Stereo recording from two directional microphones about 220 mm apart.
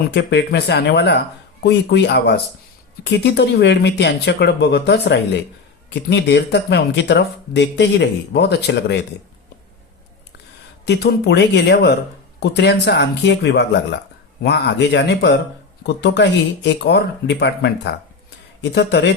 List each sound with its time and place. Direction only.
0.1 s speech: 50° left (ahead or behind)
10.8 s speech: 50° left (ahead or behind)